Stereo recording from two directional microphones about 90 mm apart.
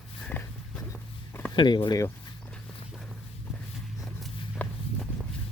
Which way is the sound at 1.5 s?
60° left (ahead or behind).